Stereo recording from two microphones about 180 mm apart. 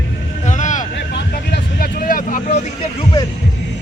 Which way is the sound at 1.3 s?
55° left (ahead or behind).